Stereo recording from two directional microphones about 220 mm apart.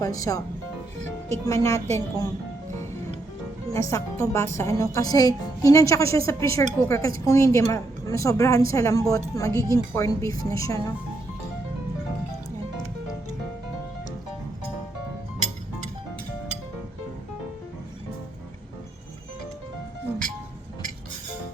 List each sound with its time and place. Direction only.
0.0 s a woman's voice: 15° left (ahead or behind)
3.7 s a woman's voice: 15° left (ahead or behind)